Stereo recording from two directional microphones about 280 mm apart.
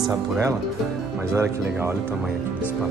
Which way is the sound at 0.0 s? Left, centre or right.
Centre.